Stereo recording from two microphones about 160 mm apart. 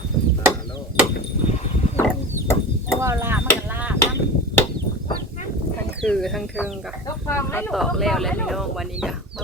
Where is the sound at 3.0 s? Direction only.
15° right (ahead or behind).